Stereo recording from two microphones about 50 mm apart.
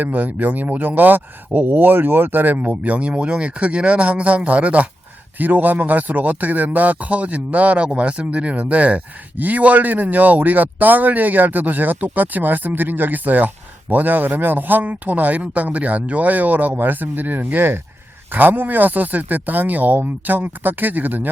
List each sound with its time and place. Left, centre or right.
0.0 s speech: right